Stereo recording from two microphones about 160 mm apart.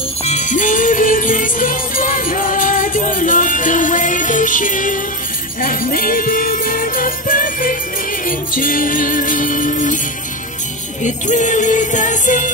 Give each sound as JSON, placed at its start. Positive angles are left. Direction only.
{"t": 0.2, "sound": "music", "side_deg": 45}
{"t": 5.6, "sound": "jingle bell", "side_deg": 60}
{"t": 8.3, "sound": "music", "side_deg": 60}
{"t": 11.0, "sound": "music", "side_deg": 50}